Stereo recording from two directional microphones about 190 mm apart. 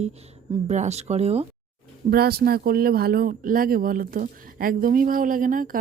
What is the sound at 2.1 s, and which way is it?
Speech, 50° right (ahead or behind).